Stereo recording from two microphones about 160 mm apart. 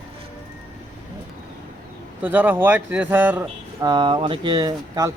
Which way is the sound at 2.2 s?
10° right (ahead or behind).